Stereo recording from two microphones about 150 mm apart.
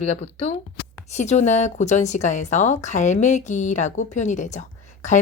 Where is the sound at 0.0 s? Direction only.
40° left (ahead or behind).